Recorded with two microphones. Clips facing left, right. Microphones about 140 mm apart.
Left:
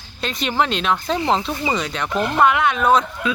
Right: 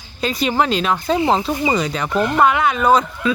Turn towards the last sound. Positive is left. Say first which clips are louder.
# right 2 dB
turn(degrees=0)  # may be behind; listen again after turning